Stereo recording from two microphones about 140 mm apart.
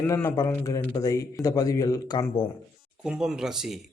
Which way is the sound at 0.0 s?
20° left (ahead or behind).